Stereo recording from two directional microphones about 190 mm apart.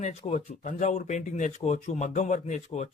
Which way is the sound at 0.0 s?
40° left (ahead or behind).